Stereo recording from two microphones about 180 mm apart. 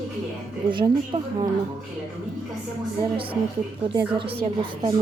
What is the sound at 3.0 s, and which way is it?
Speech, 30° right (ahead or behind).